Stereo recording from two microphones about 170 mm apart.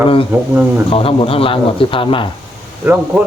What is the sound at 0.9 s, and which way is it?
A man's voice, 35° left (ahead or behind).